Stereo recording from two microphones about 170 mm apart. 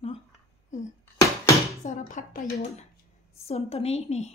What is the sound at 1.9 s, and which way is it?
Speech, 45° left (ahead or behind).